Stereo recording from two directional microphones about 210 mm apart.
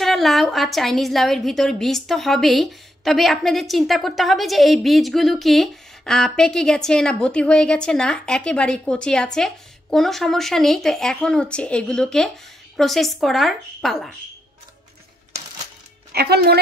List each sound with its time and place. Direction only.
0.0 s a woman's voice: centre (ahead or behind)
16.1 s a woman's voice: 50° right (ahead or behind)